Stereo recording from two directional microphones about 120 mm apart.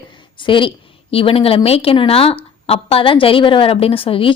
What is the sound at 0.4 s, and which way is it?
A woman's voice, 45° left (ahead or behind).